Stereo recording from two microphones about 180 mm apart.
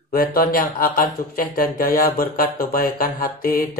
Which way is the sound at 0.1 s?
55° left (ahead or behind).